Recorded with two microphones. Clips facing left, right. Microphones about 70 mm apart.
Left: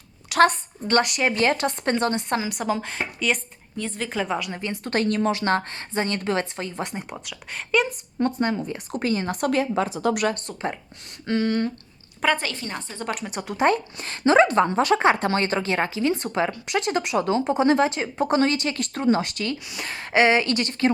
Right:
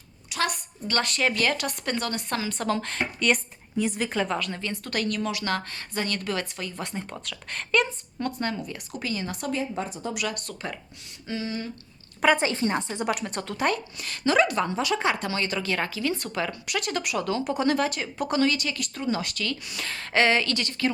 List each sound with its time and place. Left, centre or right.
0.4 s a woman's voice: left
1.0 s speech: centre
1.3 s a woman's voice: left; by 4.6 s centre
4.6 s a woman's voice: left
7.3 s speech: centre
8.2 s a woman's voice: left
8.9 s a woman's voice: left
9.4 s speech: left
10.3 s a woman's voice: left
11.3 s speech: left
12.4 s a woman's voice: right
13.1 s a woman's voice: centre
13.4 s speech: centre
13.7 s a woman's voice: left